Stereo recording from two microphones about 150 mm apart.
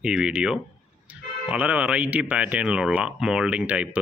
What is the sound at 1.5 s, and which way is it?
Speech, 10° right (ahead or behind).